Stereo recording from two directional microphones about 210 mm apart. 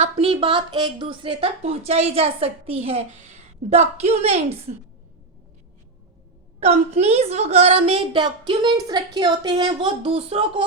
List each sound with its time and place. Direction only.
0.0 s a woman's voice: 25° right (ahead or behind)
6.6 s a woman's voice: 30° right (ahead or behind)